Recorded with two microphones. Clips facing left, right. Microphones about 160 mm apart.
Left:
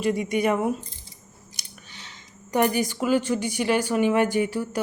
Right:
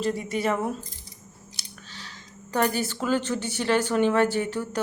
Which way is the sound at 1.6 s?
15° left (ahead or behind).